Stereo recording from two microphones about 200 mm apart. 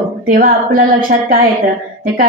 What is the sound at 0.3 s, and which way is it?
Speech, 45° right (ahead or behind).